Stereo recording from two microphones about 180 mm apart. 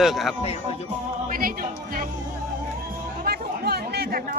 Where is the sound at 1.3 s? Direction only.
55° right (ahead or behind).